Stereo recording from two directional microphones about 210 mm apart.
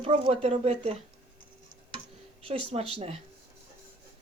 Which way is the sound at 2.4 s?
30° right (ahead or behind).